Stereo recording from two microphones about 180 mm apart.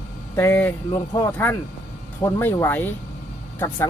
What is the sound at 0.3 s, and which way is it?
Speech, 10° left (ahead or behind).